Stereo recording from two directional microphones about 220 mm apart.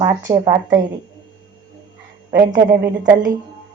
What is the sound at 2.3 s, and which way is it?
Speech, 40° right (ahead or behind).